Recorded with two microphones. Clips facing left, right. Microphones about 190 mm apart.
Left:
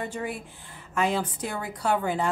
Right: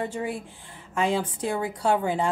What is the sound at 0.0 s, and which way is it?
A woman's voice, 25° right (ahead or behind).